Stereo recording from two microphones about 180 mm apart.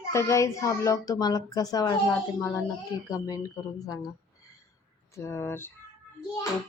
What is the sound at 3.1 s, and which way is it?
Speech, 20° left (ahead or behind).